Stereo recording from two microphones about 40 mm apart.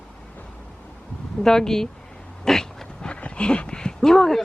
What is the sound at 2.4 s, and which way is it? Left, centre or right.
Dog, centre.